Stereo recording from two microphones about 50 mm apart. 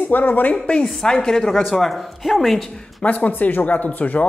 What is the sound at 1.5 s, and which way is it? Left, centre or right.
Speech, centre.